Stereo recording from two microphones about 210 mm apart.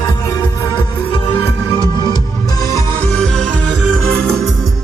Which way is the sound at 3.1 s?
Centre (ahead or behind).